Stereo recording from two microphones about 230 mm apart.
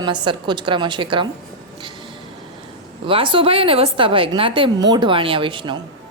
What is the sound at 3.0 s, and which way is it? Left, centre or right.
A woman's voice, right.